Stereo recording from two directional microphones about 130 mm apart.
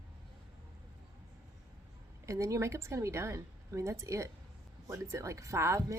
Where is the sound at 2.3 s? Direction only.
25° right (ahead or behind).